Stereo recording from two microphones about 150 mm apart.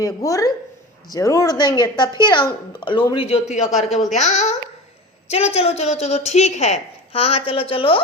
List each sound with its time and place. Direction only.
0.0 s speech: 20° left (ahead or behind); by 3.4 s 40° left (ahead or behind)
4.1 s a woman's voice: 50° left (ahead or behind)